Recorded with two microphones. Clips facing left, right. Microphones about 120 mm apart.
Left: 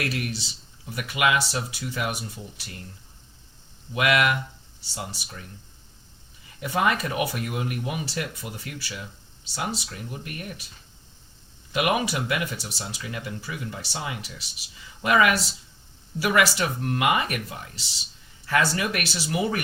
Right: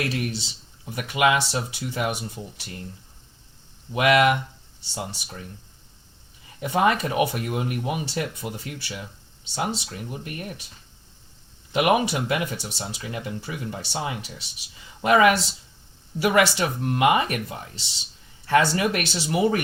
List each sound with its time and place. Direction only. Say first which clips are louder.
0.0 s speech: right 2 dB; 35° right (ahead or behind)
3.9 s speech: right 4 dB; 35° right (ahead or behind)
6.6 s speech: right 3 dB; 35° right (ahead or behind)
11.7 s speech: right 4 dB; 30° right (ahead or behind)